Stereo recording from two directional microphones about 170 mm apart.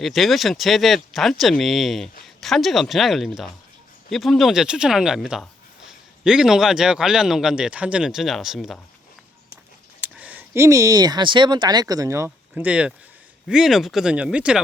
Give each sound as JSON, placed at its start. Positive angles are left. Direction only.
{"t": 0.0, "sound": "speech", "side_deg": 0}
{"t": 10.2, "sound": "speech", "side_deg": -10}